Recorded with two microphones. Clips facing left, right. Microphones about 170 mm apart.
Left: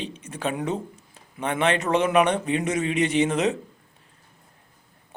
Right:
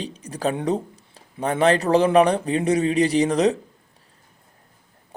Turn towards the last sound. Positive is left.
turn(degrees=-35)  # may be behind; listen again after turning